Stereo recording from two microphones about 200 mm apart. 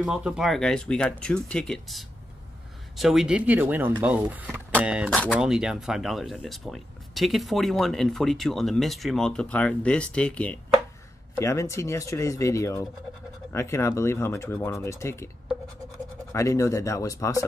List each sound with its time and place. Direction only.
0.0 s speech: 5° right (ahead or behind); by 15.2 s 15° left (ahead or behind)
16.3 s speech: 15° left (ahead or behind)